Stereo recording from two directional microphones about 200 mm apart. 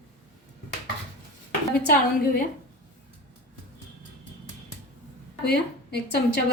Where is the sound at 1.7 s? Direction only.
45° left (ahead or behind).